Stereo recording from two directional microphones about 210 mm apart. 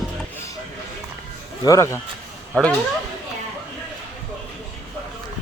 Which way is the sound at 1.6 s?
15° left (ahead or behind).